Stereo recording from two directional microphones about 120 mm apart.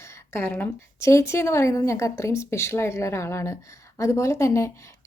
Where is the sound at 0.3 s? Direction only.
20° left (ahead or behind).